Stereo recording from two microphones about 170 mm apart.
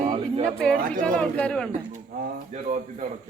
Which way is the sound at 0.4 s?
5° left (ahead or behind).